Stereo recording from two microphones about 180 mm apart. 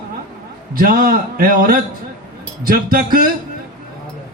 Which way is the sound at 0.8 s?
55° right (ahead or behind).